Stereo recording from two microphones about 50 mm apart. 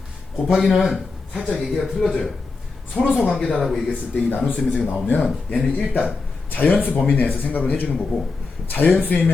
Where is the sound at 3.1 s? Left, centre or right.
Centre.